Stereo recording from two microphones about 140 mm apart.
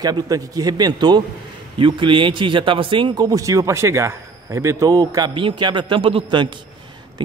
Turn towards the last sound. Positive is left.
turn(degrees=-35)  # may be behind; listen again after turning